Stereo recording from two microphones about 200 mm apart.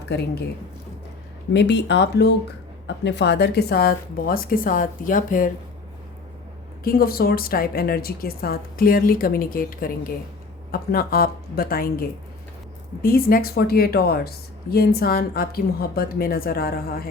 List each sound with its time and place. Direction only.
0.1 s speech: 55° left (ahead or behind)
1.5 s speech: 60° left (ahead or behind); by 5.5 s 40° left (ahead or behind)
6.8 s speech: 50° left (ahead or behind)